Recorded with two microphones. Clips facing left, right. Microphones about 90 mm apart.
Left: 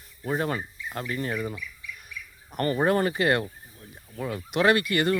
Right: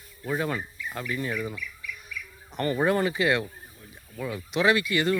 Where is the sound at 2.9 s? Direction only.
45° left (ahead or behind).